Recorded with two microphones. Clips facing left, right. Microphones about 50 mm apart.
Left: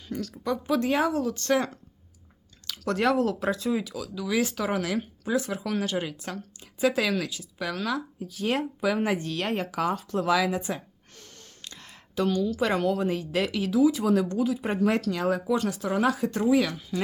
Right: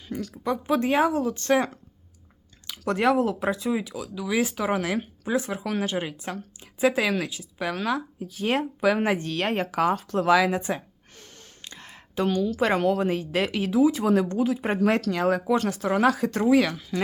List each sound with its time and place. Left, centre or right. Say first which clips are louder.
0.1 s speech: right 1 dB; centre; by 14.8 s right
14.8 s speech: right 2 dB; right
16.0 s speech: right 3 dB; right